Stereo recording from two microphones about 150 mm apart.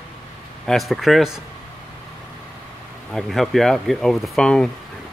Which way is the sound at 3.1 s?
Centre (ahead or behind).